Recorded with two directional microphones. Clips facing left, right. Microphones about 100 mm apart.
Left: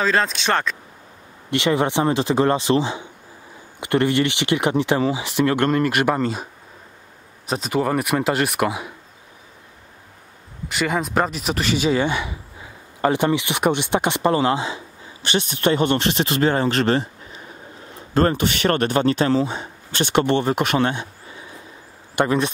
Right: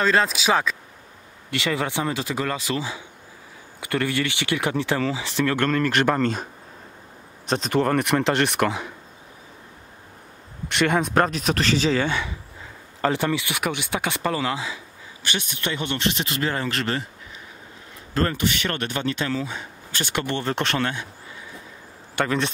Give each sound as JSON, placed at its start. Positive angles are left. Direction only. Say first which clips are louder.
{"t": 0.0, "sound": "speech", "louder": "even", "side_deg": 0}
{"t": 1.5, "sound": "speech", "louder": "left 6 dB", "side_deg": 20}
{"t": 7.4, "sound": "speech", "louder": "even", "side_deg": 5}
{"t": 10.7, "sound": "speech", "louder": "right 1 dB", "side_deg": 0}
{"t": 18.1, "sound": "speech", "louder": "left 5 dB", "side_deg": 30}
{"t": 22.2, "sound": "speech", "louder": "left 4 dB", "side_deg": 20}